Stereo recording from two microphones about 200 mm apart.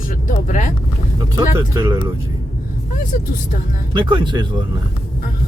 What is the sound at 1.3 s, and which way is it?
Speech, 15° right (ahead or behind).